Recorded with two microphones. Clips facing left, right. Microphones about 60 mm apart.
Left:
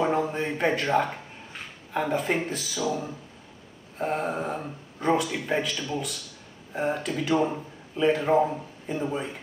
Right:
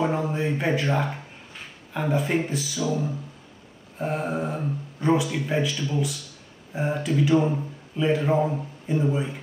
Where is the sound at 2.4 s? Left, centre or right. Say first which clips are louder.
Right 2 dB; centre.